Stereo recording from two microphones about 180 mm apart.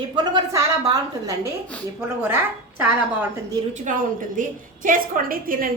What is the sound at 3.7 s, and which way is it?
A woman's voice, 45° right (ahead or behind).